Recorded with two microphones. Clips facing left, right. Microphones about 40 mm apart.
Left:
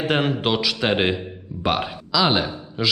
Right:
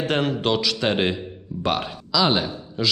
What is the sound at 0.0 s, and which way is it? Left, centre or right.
A man's voice, centre.